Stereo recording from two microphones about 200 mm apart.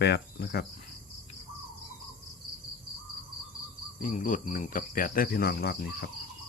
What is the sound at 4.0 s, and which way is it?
Cricket, 45° left (ahead or behind).